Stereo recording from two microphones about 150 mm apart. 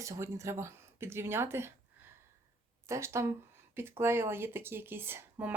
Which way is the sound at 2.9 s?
20° right (ahead or behind).